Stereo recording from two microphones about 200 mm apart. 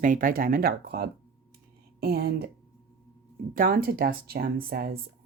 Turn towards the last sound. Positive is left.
turn(degrees=-45)  # may be behind; listen again after turning